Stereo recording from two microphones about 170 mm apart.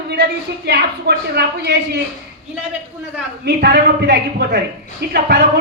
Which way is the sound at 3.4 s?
75° right (ahead or behind).